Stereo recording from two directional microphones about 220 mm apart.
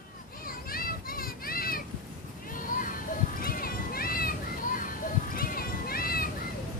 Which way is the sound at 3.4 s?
40° left (ahead or behind).